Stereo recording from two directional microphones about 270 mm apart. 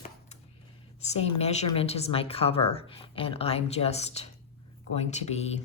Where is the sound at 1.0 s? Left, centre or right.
Left.